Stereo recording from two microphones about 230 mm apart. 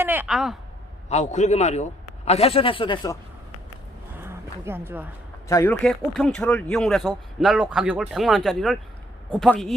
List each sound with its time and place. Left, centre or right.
0.0 s speech: centre
1.1 s a man's voice: left
4.2 s a sound: centre
5.5 s speech: centre
5.8 s speech: centre